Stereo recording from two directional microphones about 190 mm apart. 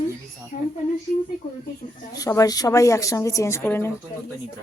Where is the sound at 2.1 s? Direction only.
20° left (ahead or behind).